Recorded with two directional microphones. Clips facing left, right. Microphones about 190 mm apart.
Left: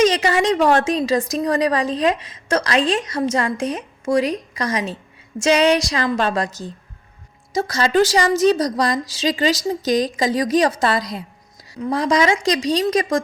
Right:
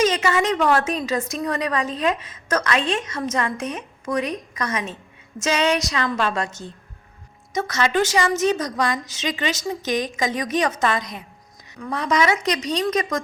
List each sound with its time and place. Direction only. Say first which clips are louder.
0.0 s a woman's voice: left 3 dB; 35° left (ahead or behind)